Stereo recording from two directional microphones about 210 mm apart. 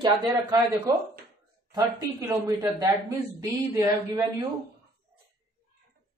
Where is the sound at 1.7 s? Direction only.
20° right (ahead or behind).